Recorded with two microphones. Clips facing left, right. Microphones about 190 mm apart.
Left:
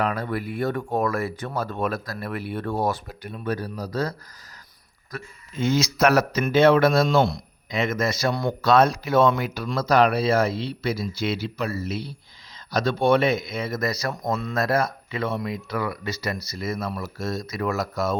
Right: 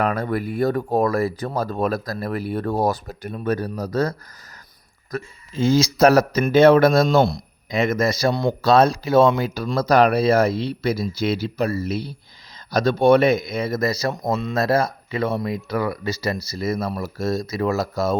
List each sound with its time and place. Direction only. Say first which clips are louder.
0.0 s speech: right 4 dB; 45° right (ahead or behind)
5.1 s speech: right 6 dB; 30° right (ahead or behind)